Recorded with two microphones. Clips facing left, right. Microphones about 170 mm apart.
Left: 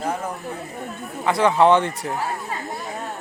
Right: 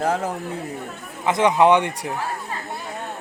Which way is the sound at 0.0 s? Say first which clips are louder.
Right 4 dB; 80° right.